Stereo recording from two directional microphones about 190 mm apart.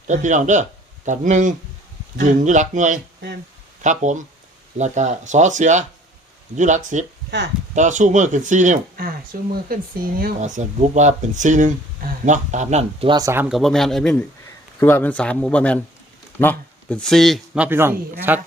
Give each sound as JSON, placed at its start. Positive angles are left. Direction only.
{"t": 0.1, "sound": "a man's voice", "side_deg": -40}
{"t": 7.3, "sound": "speech", "side_deg": -60}
{"t": 7.8, "sound": "speech", "side_deg": -40}
{"t": 13.1, "sound": "speech", "side_deg": -20}
{"t": 13.5, "sound": "a man's voice", "side_deg": 0}